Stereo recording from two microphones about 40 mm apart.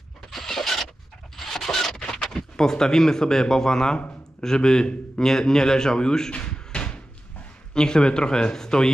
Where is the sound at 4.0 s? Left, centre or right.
Left.